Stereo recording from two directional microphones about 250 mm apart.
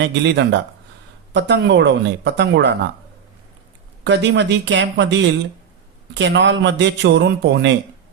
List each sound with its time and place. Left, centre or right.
0.0 s a man's voice: right
4.0 s a man's voice: right